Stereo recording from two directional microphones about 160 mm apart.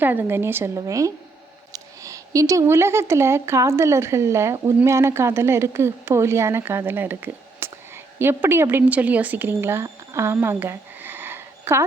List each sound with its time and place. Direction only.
0.0 s a woman's voice: 10° right (ahead or behind)